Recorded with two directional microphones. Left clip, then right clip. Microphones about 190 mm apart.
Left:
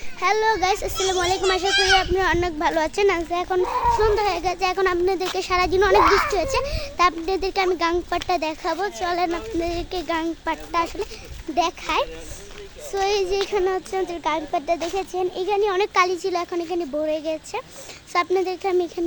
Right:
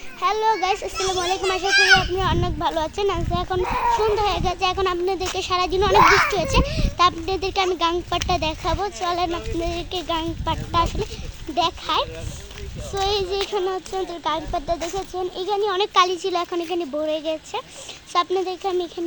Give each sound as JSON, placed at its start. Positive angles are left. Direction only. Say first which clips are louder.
{"t": 0.2, "sound": "speech", "louder": "even", "side_deg": 10}
{"t": 0.9, "sound": "speech", "louder": "left 1 dB", "side_deg": -5}
{"t": 1.2, "sound": "speech", "louder": "left 2 dB", "side_deg": 15}
{"t": 1.7, "sound": "speech", "louder": "right 5 dB", "side_deg": -5}
{"t": 2.0, "sound": "a child's voice", "louder": "left 2 dB", "side_deg": 20}
{"t": 3.6, "sound": "speech", "louder": "even", "side_deg": -40}
{"t": 4.2, "sound": "speech", "louder": "even", "side_deg": 5}
{"t": 6.0, "sound": "a child's voice", "louder": "right 7 dB", "side_deg": -45}
{"t": 6.5, "sound": "speech", "louder": "right 1 dB", "side_deg": 10}
{"t": 18.1, "sound": "speech", "louder": "even", "side_deg": 10}